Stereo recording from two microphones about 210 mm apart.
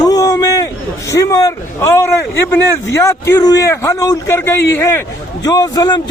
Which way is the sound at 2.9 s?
15° left (ahead or behind).